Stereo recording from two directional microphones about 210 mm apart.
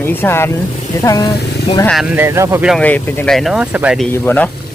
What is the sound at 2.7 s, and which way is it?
Speech, 5° left (ahead or behind).